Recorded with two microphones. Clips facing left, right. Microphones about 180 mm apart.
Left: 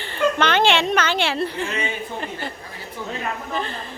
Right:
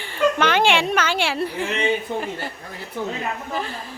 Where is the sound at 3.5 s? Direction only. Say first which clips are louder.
Left 1 dB; 5° right (ahead or behind).